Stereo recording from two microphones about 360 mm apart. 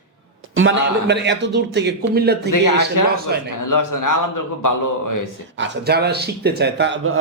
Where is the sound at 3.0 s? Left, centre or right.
Left.